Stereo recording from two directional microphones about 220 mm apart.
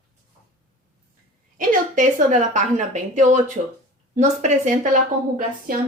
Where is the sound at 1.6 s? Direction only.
35° right (ahead or behind).